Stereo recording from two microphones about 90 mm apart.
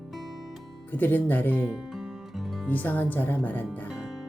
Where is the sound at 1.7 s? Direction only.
5° right (ahead or behind).